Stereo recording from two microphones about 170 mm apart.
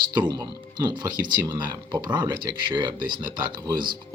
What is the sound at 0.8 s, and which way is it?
Speech, 25° right (ahead or behind).